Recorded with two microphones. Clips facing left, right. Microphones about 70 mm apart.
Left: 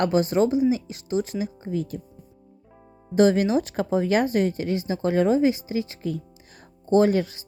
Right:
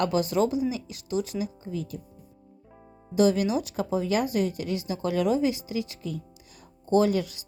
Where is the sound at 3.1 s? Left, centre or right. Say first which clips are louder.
Left 4 dB; left.